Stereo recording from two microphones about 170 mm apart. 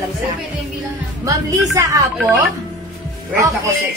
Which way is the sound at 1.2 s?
20° right (ahead or behind).